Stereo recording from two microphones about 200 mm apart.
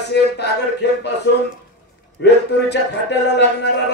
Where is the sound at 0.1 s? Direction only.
55° left (ahead or behind).